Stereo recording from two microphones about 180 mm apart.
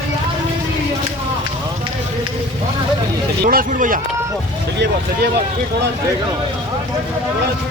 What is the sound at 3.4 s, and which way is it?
Speech, 55° right (ahead or behind).